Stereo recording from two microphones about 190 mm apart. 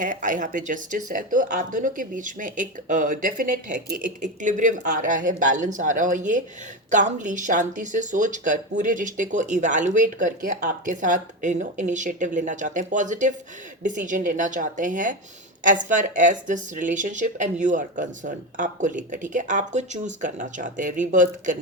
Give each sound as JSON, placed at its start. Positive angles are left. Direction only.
{"t": 0.0, "sound": "speech", "side_deg": -40}